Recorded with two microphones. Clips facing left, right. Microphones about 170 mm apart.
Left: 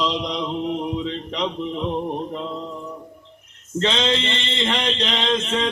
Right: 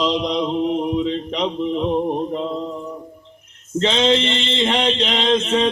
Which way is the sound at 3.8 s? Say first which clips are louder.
Right 4 dB; 20° right (ahead or behind).